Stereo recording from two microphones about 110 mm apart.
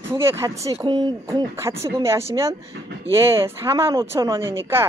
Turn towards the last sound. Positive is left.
turn(degrees=-20)  # may be behind; listen again after turning